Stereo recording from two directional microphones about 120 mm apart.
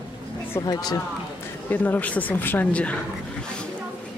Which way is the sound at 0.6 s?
35° left (ahead or behind).